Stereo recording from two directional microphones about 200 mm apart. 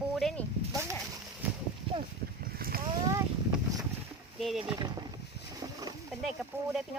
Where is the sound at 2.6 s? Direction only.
50° right (ahead or behind).